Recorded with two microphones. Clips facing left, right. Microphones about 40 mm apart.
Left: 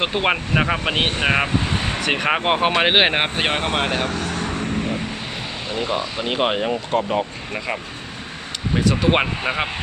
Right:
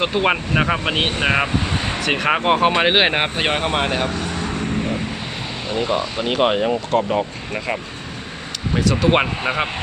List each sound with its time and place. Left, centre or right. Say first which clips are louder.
0.0 s speech: right 2 dB; centre
1.6 s vehicle: even; centre
2.0 s speech: right 2 dB; centre
4.1 s vehicle: even; left
5.7 s speech: right 3 dB; centre
8.8 s speech: right 1 dB; centre
9.0 s speech: right 2 dB; centre